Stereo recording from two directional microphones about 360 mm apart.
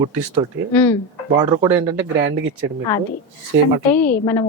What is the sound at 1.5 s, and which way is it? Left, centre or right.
Speech, centre.